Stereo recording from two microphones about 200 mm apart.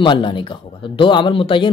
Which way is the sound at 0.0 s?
25° left (ahead or behind).